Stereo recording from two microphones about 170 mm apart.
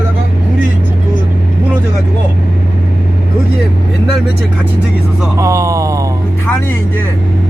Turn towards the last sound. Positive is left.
turn(degrees=-20)  # may be behind; listen again after turning